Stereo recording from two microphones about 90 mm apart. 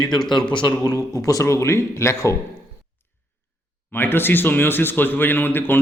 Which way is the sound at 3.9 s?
25° left (ahead or behind).